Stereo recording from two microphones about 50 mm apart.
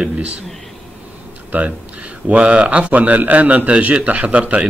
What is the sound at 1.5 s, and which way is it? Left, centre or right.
Speech, right.